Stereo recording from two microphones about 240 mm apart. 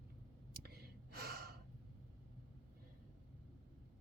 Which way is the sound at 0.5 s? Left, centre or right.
Right.